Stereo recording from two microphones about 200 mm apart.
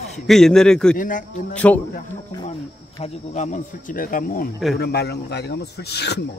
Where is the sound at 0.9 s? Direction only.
45° left (ahead or behind).